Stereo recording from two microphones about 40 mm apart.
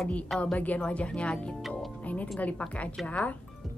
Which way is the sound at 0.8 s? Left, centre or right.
Left.